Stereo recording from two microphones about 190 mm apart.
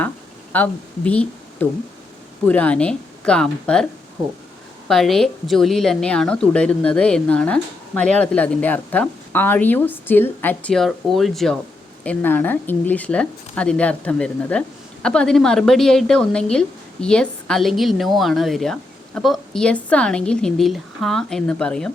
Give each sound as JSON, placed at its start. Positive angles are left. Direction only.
{"t": 0.5, "sound": "a woman's voice", "side_deg": 10}
{"t": 4.9, "sound": "a woman's voice", "side_deg": 0}